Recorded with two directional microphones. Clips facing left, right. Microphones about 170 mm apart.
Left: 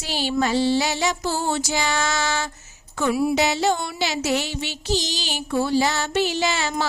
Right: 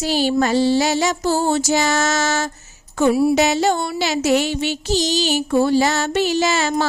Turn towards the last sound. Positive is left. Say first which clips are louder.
# right 5 dB
turn(degrees=-45)  # may be behind; listen again after turning